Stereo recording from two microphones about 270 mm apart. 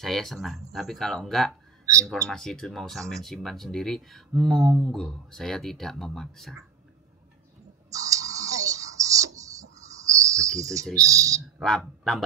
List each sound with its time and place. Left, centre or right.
0.0 s speech: centre
7.9 s music: centre
9.8 s a sound: centre
10.4 s a sound: right
11.0 s speech: centre
11.6 s speech: centre